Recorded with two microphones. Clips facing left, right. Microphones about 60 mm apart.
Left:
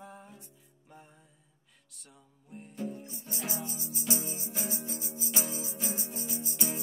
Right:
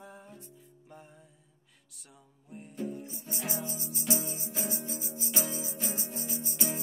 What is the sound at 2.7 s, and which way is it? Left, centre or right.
Music, centre.